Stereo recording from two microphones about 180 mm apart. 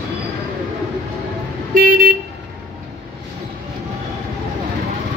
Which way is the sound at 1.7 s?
55° right (ahead or behind).